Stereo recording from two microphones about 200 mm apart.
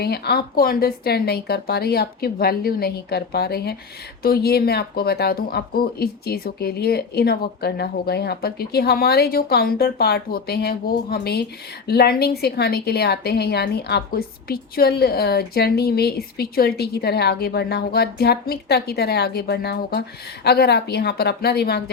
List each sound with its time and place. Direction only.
0.0 s a woman's voice: 50° left (ahead or behind)